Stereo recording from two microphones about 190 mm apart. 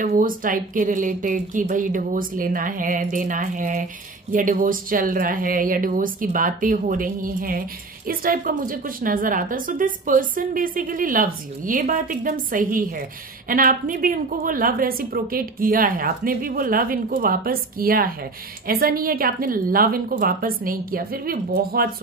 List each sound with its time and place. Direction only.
0.0 s a woman's voice: 45° right (ahead or behind)